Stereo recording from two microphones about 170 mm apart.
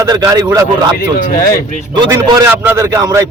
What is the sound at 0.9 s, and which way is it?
Speech, 55° left (ahead or behind).